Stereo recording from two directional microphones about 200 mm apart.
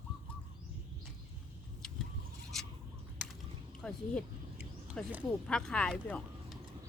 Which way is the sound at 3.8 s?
5° left (ahead or behind).